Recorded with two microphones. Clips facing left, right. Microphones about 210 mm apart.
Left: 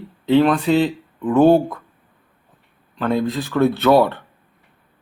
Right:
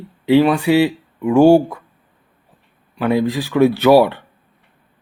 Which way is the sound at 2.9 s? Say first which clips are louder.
Right 3 dB; 10° right (ahead or behind).